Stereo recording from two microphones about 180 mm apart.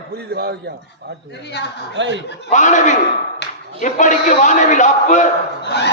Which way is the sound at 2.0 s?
85° right.